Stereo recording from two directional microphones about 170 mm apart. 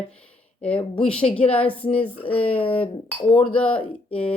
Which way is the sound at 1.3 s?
5° left (ahead or behind).